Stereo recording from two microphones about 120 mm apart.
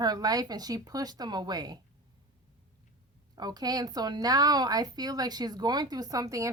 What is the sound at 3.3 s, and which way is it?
Speech, 35° right (ahead or behind).